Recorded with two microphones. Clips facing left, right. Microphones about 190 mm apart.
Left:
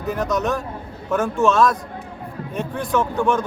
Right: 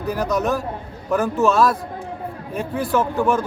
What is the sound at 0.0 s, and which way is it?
Speech, centre (ahead or behind).